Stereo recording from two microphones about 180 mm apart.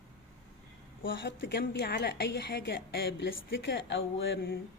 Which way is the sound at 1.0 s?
90° left.